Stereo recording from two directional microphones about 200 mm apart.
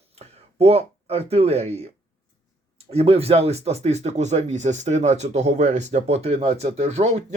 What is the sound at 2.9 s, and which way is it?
Speech, 30° right (ahead or behind).